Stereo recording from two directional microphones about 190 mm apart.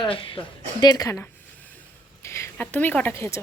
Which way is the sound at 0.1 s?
25° left (ahead or behind).